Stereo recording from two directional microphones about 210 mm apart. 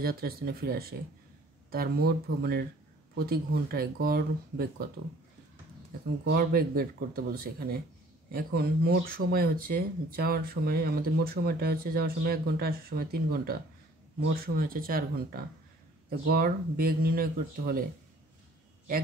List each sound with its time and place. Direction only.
0.0 s speech: 45° right (ahead or behind)
6.2 s speech: 45° right (ahead or behind)